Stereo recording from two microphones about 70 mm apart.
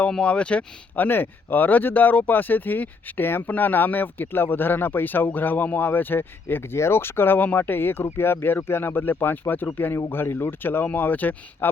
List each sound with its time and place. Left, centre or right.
0.1 s speech: centre
1.0 s speech: left